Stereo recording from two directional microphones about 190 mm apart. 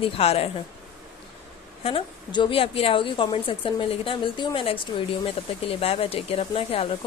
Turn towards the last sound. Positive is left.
turn(degrees=30)  # may be behind; listen again after turning